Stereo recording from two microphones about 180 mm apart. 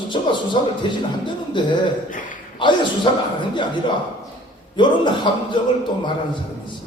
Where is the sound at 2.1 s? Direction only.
45° left (ahead or behind).